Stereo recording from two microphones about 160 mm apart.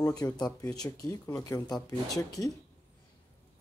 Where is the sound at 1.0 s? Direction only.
20° left (ahead or behind).